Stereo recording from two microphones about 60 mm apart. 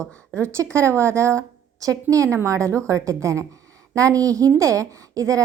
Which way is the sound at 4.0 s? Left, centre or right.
Right.